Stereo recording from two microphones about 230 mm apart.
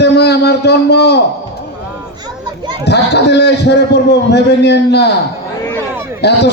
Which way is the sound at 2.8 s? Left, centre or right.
Left.